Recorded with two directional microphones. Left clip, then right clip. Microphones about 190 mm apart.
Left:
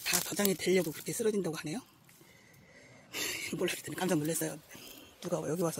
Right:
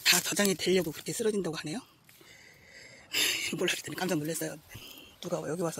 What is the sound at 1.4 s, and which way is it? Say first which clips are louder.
Speech: right 2 dB; 15° right (ahead or behind).